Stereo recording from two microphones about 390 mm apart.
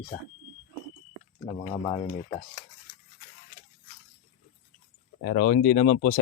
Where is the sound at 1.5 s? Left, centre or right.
Centre.